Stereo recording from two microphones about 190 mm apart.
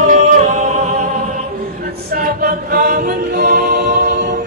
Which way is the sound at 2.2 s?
50° right (ahead or behind).